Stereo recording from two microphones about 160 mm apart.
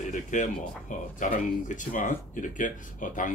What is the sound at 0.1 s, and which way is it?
Speech, 50° left (ahead or behind).